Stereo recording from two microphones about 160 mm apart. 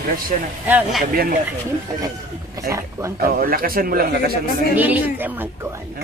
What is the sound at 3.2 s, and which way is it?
A man's voice, 65° right (ahead or behind).